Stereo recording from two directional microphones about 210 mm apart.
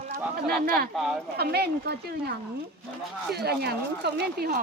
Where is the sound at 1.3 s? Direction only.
50° right (ahead or behind).